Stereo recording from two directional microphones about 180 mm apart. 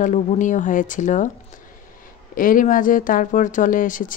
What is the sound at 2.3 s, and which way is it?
A woman's voice, 50° left (ahead or behind).